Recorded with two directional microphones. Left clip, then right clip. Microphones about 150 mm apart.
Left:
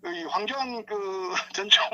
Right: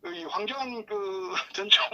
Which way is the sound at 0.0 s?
25° left (ahead or behind).